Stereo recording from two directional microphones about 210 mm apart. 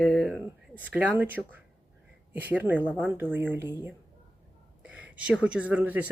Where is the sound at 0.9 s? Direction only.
10° right (ahead or behind).